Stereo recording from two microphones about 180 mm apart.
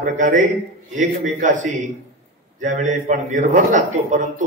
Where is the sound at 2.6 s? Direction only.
45° right (ahead or behind).